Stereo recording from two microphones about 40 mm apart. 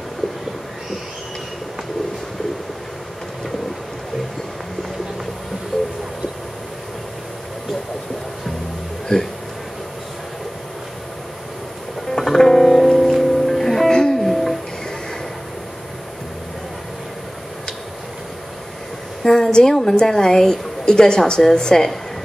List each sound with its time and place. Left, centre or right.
5.7 s a sound: centre
9.1 s speech: centre
12.2 s music: centre
14.2 s music: centre
19.2 s a woman's voice: centre